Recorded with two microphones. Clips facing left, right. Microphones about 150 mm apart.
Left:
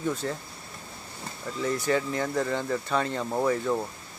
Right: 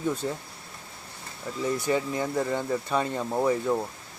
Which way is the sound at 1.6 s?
15° right (ahead or behind).